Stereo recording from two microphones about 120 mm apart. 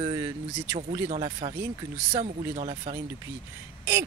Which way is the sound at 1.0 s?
60° right (ahead or behind).